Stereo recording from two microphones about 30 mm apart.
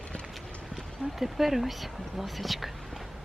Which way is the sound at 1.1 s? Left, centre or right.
Centre.